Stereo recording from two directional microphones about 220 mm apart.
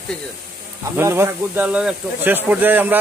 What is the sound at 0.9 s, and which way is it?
Speech, 10° right (ahead or behind).